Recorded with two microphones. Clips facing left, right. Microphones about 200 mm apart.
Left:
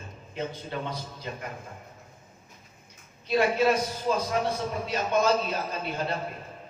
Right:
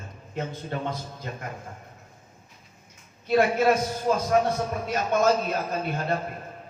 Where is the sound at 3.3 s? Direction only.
50° right (ahead or behind).